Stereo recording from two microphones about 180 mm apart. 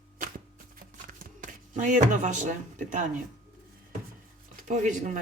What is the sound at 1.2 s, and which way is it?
Speech, 45° right (ahead or behind).